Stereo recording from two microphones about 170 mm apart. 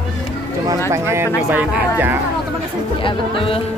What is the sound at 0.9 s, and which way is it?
Speech, 15° right (ahead or behind).